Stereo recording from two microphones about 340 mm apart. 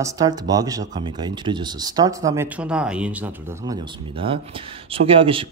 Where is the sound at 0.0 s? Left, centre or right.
Centre.